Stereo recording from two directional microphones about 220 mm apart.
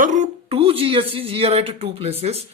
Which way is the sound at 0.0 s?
35° right (ahead or behind).